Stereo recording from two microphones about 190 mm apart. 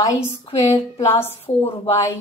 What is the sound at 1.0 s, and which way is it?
Speech, 15° left (ahead or behind).